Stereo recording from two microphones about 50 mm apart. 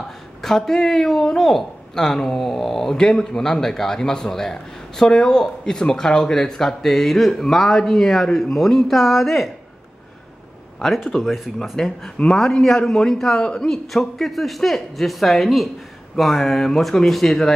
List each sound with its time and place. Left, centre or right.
0.4 s speech: centre
11.1 s speech: centre
11.7 s speech: centre
13.4 s a man's voice: centre
13.7 s speech: centre